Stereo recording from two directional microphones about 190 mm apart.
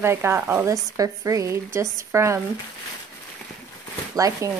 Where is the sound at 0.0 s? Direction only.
15° right (ahead or behind).